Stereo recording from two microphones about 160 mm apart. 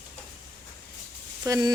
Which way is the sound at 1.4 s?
20° right (ahead or behind).